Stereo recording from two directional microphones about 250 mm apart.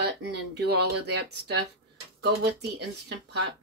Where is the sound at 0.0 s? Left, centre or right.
Right.